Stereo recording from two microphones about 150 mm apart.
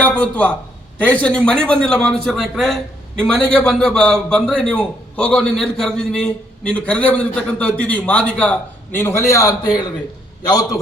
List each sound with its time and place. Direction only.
0.0 s a man's voice: 10° left (ahead or behind)